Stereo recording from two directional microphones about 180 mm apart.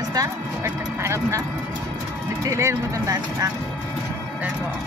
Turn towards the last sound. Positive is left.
turn(degrees=-20)  # may be behind; listen again after turning